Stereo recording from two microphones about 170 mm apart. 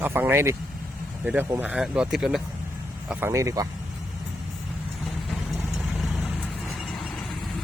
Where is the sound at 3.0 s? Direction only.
15° right (ahead or behind).